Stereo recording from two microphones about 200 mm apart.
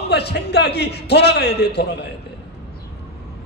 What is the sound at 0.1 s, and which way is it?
A man's voice, 55° left (ahead or behind).